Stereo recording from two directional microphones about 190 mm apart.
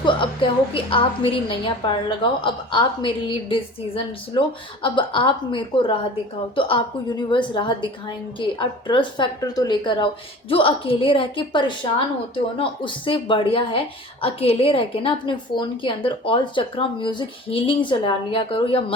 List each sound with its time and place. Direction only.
0.0 s speech: 25° left (ahead or behind)